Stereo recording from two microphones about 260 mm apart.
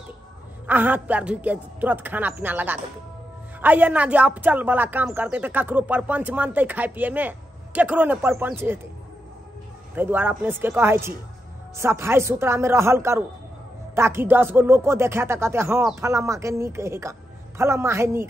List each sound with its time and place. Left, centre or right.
0.7 s speech: centre
9.9 s speech: centre